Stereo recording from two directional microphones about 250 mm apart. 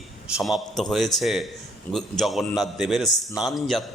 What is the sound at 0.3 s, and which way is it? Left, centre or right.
A man's voice, centre.